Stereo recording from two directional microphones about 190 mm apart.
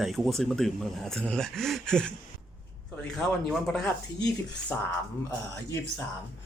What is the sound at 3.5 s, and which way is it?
Speech, centre (ahead or behind).